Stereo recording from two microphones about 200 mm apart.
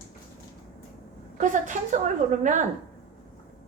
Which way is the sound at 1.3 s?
40° right (ahead or behind).